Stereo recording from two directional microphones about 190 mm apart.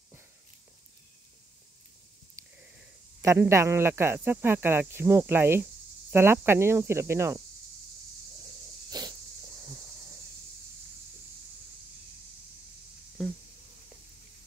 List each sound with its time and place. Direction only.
3.2 s speech: 15° right (ahead or behind)
8.9 s sneeze: 20° right (ahead or behind)